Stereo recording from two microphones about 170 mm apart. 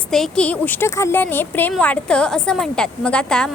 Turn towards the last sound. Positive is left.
turn(degrees=5)  # may be behind; listen again after turning